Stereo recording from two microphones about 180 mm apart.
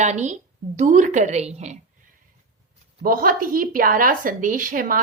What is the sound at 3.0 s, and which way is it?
A woman's voice, 50° right (ahead or behind).